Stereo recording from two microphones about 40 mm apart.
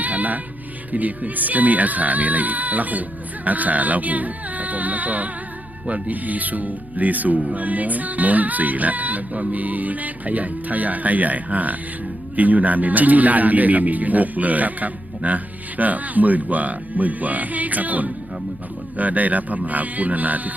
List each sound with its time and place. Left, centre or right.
0.0 s music: right
0.9 s speech: right
3.4 s music: right
5.9 s speech: right
7.5 s music: right
12.4 s speech: right